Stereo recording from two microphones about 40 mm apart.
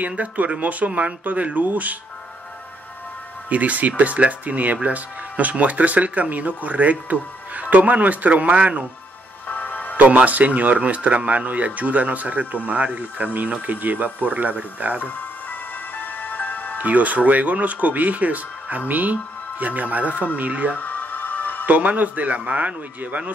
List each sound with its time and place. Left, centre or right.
0.2 s speech: right
3.4 s speech: right
9.5 s music: left
9.9 s speech: right
16.0 s music: left
16.7 s speech: right
20.7 s music: left
21.6 s speech: right